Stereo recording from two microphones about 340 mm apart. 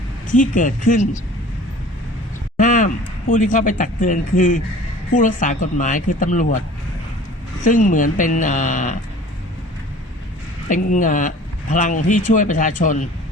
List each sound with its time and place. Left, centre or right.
0.3 s speech: left
2.6 s speech: left
7.6 s speech: left
10.7 s speech: left